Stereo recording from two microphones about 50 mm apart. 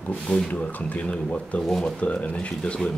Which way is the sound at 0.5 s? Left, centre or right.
Left.